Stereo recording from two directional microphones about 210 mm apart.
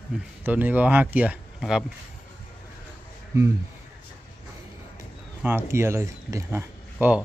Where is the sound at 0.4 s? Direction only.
10° right (ahead or behind).